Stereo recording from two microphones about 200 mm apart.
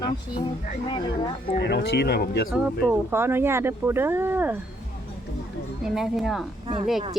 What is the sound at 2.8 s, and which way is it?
Speech, 10° right (ahead or behind).